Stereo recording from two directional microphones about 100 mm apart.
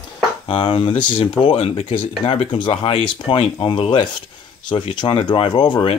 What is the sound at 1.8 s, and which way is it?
Speech, 80° left.